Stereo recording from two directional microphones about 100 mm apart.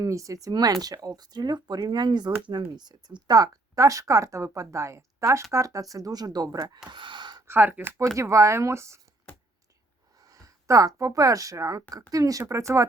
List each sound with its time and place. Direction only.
0.0 s speech: 35° right (ahead or behind)
6.9 s gasp: 50° right (ahead or behind)
7.4 s speech: 20° right (ahead or behind)
9.3 s a sound: 15° left (ahead or behind)
10.2 s speech: 35° right (ahead or behind)